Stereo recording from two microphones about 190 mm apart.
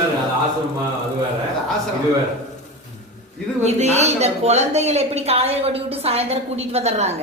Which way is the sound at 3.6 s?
35° right (ahead or behind).